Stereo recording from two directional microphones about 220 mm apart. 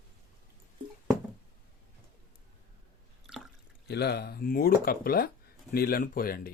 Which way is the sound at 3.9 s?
45° left (ahead or behind).